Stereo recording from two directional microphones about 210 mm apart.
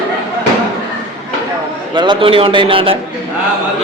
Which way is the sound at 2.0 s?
25° right (ahead or behind).